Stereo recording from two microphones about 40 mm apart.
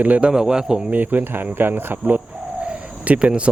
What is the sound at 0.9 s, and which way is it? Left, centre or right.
Speech, right.